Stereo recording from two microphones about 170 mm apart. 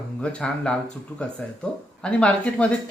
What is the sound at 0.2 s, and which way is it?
Speech, 5° left (ahead or behind).